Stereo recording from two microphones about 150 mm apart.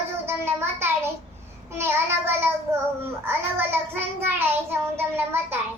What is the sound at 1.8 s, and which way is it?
Child singing, 15° right (ahead or behind).